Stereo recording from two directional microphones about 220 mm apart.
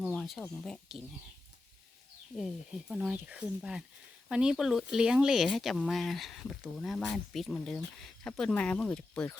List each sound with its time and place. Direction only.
0.0 s speech: centre (ahead or behind)
2.9 s speech: 5° right (ahead or behind)